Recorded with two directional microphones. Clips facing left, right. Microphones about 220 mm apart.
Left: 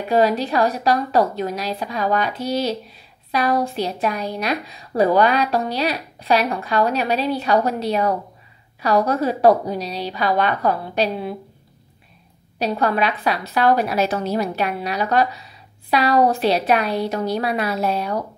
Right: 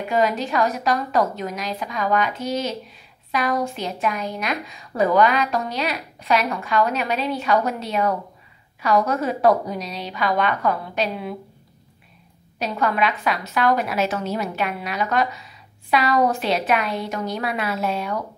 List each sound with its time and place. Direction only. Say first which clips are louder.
0.1 s a woman's voice: left 4 dB; 35° left (ahead or behind)
12.5 s a woman's voice: left 3 dB; 35° left (ahead or behind)